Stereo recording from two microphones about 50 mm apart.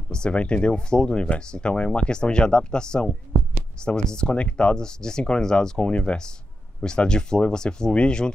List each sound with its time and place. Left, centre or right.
0.1 s speech: left